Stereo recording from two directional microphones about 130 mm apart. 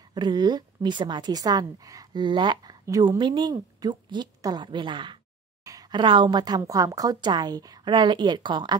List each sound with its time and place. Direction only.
0.1 s a woman's voice: 35° right (ahead or behind)